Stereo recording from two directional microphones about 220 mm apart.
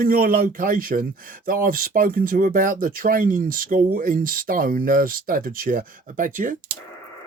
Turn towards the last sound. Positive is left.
turn(degrees=-35)  # may be behind; listen again after turning